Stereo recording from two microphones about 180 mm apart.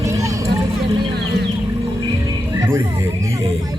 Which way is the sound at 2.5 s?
15° right (ahead or behind).